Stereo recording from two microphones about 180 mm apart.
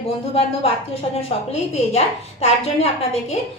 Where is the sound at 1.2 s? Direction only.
35° left (ahead or behind).